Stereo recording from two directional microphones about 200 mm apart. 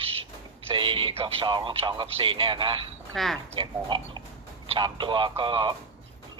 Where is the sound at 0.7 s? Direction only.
25° right (ahead or behind).